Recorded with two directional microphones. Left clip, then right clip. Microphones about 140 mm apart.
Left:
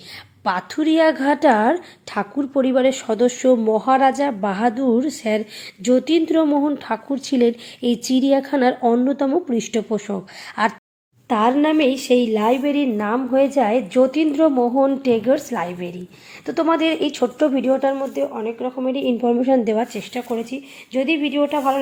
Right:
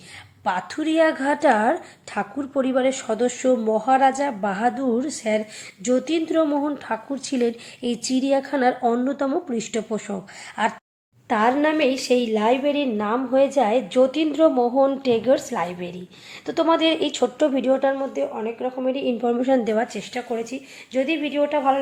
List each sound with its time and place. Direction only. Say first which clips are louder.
0.4 s a woman's voice: left 4 dB; 40° left (ahead or behind); by 19.1 s 55° left (ahead or behind)
19.2 s a woman's voice: left 3 dB; 30° left (ahead or behind)
19.7 s speech: left 2 dB; 50° left (ahead or behind)